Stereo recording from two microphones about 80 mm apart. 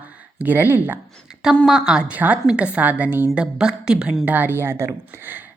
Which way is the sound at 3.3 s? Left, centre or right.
Centre.